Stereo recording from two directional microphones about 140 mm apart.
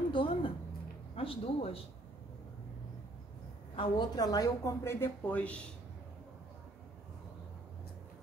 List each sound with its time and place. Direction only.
0.1 s a sound: 40° left (ahead or behind)
1.1 s speech: 45° left (ahead or behind)
3.7 s a woman's voice: 30° left (ahead or behind); by 5.6 s 10° left (ahead or behind)